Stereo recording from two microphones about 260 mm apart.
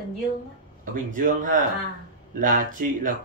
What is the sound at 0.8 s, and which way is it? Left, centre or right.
Speech, right.